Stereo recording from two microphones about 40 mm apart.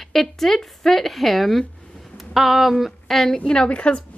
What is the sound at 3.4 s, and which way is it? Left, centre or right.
Speech, left.